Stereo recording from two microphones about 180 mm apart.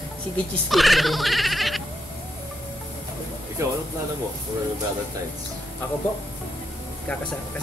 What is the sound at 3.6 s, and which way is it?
Speech, 15° right (ahead or behind).